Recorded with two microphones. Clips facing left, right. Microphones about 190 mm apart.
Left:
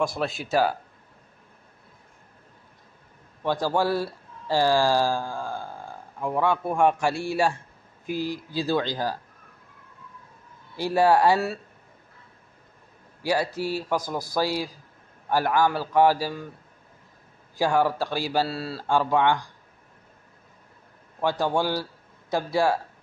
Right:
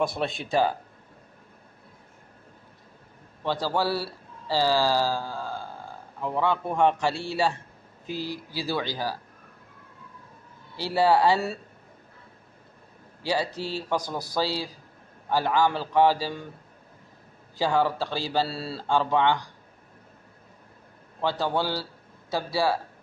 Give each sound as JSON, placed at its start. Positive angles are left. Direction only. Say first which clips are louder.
{"t": 0.0, "sound": "speech", "louder": "left 1 dB", "side_deg": 0}
{"t": 3.4, "sound": "speech", "louder": "left 2 dB", "side_deg": 15}
{"t": 11.0, "sound": "speech", "louder": "left 1 dB", "side_deg": 15}
{"t": 13.2, "sound": "speech", "louder": "left 3 dB", "side_deg": 10}
{"t": 17.6, "sound": "speech", "louder": "left 2 dB", "side_deg": 10}
{"t": 18.5, "sound": "speech", "louder": "left 1 dB", "side_deg": 0}
{"t": 21.2, "sound": "speech", "louder": "left 2 dB", "side_deg": 15}